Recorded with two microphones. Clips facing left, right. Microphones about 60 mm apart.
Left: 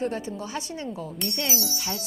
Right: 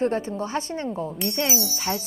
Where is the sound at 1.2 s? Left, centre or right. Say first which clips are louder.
Right 3 dB; centre.